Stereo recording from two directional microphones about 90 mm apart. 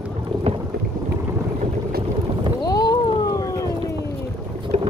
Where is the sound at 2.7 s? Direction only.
45° left (ahead or behind).